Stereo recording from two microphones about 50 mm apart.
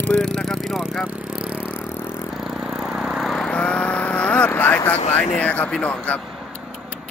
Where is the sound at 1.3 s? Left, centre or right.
Right.